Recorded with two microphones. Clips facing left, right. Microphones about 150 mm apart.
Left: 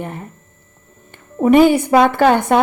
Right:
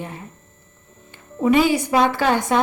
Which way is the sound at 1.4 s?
55° left (ahead or behind).